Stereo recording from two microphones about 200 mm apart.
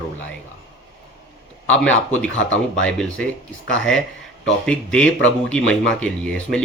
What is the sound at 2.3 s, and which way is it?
Speech, 70° left (ahead or behind).